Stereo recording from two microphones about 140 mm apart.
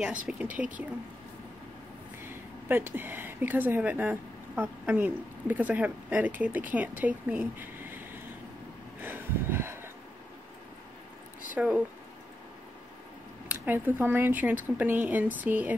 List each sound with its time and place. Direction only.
0.3 s speech: 10° right (ahead or behind)
2.2 s speech: 15° right (ahead or behind)
9.0 s a sound: 15° right (ahead or behind)
11.5 s speech: 10° right (ahead or behind)
13.5 s speech: 15° right (ahead or behind)